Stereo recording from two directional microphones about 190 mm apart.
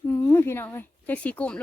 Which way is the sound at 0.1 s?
15° left (ahead or behind).